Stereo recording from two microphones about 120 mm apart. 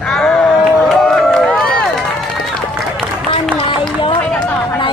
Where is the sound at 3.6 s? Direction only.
45° left (ahead or behind).